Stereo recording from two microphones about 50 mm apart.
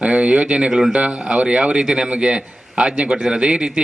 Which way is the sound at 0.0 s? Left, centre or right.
Right.